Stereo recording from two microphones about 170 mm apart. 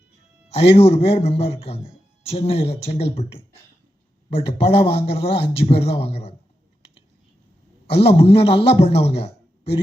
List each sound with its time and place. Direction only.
0.4 s a man's voice: 35° left (ahead or behind)
7.9 s a man's voice: 35° left (ahead or behind)